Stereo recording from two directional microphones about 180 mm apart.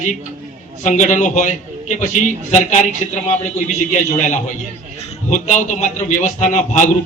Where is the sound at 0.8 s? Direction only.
45° left (ahead or behind).